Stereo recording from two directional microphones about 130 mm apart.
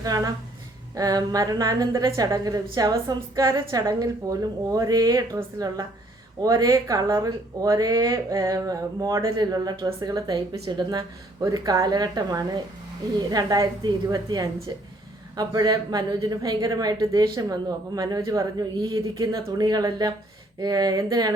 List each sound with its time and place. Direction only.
0.0 s a woman's voice: 25° right (ahead or behind)
18.9 s a woman's voice: 40° right (ahead or behind)
19.3 s a woman's voice: 25° right (ahead or behind)